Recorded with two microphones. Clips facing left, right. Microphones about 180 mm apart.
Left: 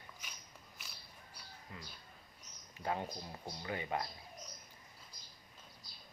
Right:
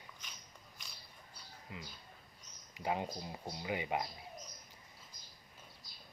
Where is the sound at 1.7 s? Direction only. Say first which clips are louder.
Right 4 dB; 15° right (ahead or behind).